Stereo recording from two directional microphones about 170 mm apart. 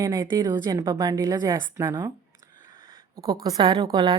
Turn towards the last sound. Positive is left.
turn(degrees=-25)  # may be behind; listen again after turning